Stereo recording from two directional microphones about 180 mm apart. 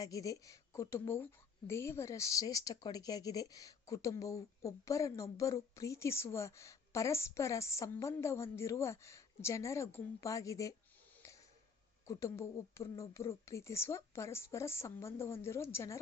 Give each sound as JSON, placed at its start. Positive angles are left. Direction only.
{"t": 0.0, "sound": "a woman's voice", "side_deg": 20}
{"t": 12.0, "sound": "a woman's voice", "side_deg": 15}